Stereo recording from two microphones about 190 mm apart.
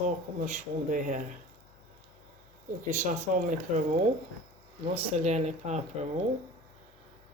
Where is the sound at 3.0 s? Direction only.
45° right (ahead or behind).